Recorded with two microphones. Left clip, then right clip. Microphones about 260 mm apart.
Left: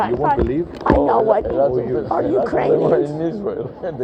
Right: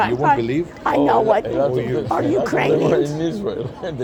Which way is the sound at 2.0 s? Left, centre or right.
Right.